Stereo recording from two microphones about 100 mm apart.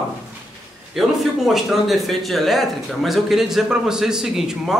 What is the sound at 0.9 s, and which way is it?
A man's voice, centre (ahead or behind).